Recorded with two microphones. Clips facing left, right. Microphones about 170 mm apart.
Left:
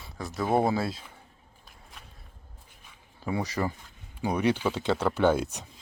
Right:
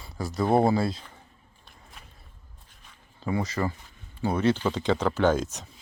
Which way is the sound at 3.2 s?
10° left (ahead or behind).